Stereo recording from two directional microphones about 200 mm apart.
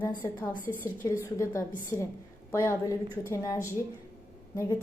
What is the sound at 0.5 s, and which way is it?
Speech, 45° left (ahead or behind).